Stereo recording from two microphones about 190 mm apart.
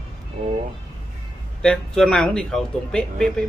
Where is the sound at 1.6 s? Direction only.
5° left (ahead or behind).